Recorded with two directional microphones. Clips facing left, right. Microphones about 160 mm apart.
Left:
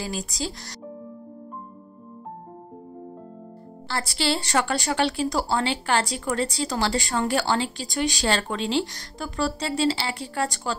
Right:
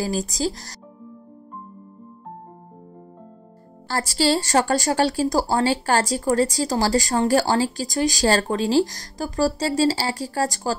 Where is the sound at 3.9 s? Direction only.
45° right (ahead or behind).